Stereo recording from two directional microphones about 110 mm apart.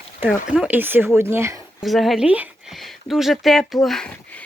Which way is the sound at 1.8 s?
Centre (ahead or behind).